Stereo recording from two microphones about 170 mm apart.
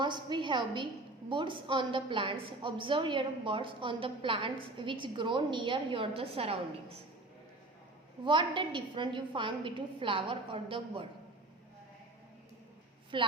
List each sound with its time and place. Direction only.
0.0 s a woman's voice: 25° right (ahead or behind)
8.2 s a woman's voice: 30° right (ahead or behind)
13.1 s a woman's voice: 30° right (ahead or behind)